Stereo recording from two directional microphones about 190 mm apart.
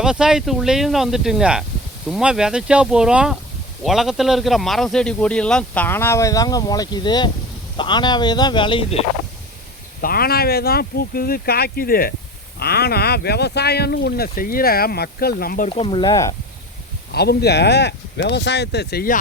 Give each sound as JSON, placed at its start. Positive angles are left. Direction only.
{"t": 0.0, "sound": "a man's voice", "side_deg": -5}
{"t": 10.0, "sound": "speech", "side_deg": 50}
{"t": 15.7, "sound": "speech", "side_deg": 25}
{"t": 17.1, "sound": "speech", "side_deg": 60}